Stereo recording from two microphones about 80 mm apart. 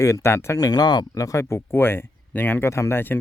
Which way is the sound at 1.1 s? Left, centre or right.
Left.